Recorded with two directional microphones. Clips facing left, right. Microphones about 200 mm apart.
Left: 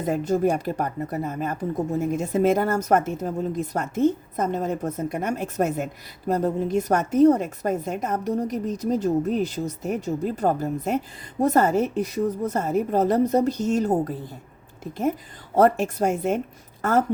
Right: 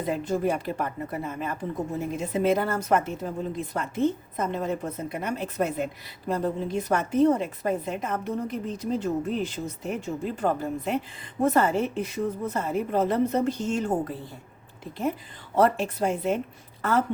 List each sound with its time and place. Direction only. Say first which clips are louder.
0.0 s a woman's voice: left 4 dB; 45° left (ahead or behind)
15.5 s a woman's voice: left 4 dB; 45° left (ahead or behind)